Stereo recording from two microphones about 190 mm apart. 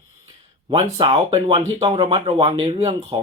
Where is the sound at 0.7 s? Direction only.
25° right (ahead or behind).